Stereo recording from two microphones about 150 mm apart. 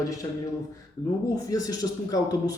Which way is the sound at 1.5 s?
25° left (ahead or behind).